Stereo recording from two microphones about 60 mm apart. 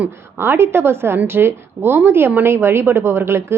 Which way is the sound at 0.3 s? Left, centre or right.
Right.